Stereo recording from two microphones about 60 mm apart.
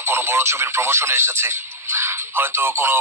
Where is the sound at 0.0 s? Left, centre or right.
Right.